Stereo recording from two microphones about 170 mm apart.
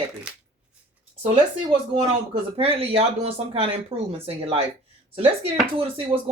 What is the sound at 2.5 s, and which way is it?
Speech, 35° right (ahead or behind).